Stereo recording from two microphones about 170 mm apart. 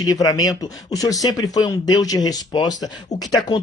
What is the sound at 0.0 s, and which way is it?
Speech, 20° left (ahead or behind).